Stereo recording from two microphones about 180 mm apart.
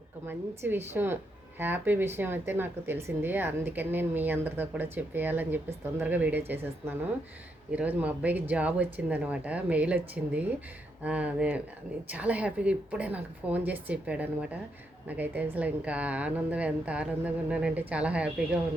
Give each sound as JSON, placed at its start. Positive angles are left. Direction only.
{"t": 0.3, "sound": "speech", "side_deg": -10}